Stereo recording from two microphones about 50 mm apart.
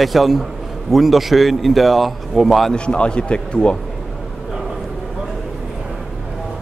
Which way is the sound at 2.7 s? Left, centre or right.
Centre.